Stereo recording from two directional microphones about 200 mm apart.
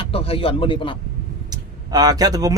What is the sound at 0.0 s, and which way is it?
Speech, 30° left (ahead or behind).